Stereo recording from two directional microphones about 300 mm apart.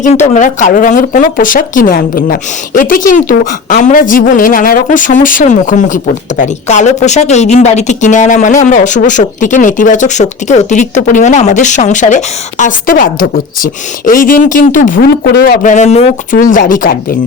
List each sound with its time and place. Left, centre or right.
0.0 s speech: left